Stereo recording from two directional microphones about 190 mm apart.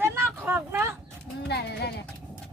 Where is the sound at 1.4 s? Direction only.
60° left (ahead or behind).